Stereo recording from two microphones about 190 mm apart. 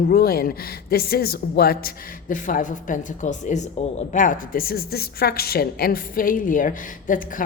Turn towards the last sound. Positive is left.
turn(degrees=45)  # may be behind; listen again after turning